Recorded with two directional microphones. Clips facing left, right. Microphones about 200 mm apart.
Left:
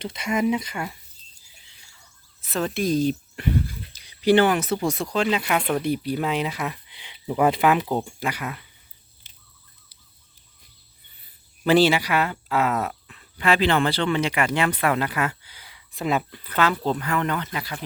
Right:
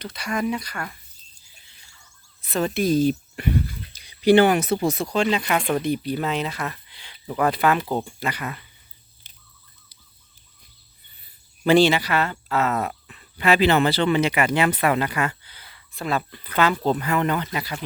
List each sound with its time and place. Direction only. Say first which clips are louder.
0.0 s speech: left 3 dB; 25° left (ahead or behind)
2.4 s speech: right 2 dB; centre (ahead or behind)
4.9 s speech: even; centre (ahead or behind)
11.6 s speech: right 1 dB; 5° left (ahead or behind)
12.9 s speech: right 1 dB; 5° right (ahead or behind); by 16.2 s 15° left (ahead or behind)
16.3 s speech: right 1 dB; 5° left (ahead or behind)